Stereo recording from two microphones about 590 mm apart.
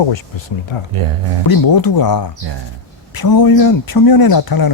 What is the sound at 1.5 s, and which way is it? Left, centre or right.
Speech, left.